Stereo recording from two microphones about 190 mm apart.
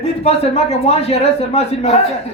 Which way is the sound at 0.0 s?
35° left (ahead or behind).